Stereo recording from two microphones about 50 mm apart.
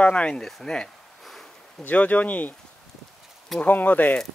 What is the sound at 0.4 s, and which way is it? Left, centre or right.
Speech, centre.